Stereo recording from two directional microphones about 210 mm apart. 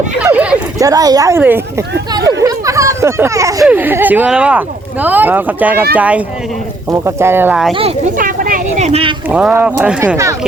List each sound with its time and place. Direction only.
0.2 s speech: 10° right (ahead or behind)
8.2 s speech: 40° right (ahead or behind)
9.3 s speech: 5° right (ahead or behind)